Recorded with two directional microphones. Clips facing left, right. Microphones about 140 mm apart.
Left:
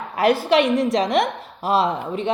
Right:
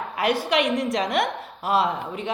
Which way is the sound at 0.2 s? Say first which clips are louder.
Left 6 dB; 35° left (ahead or behind).